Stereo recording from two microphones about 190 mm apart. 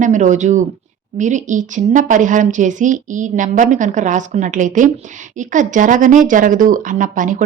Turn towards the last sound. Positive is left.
turn(degrees=-45)  # may be behind; listen again after turning